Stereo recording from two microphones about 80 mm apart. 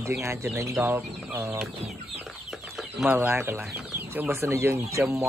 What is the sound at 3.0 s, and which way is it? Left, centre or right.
Speech, right.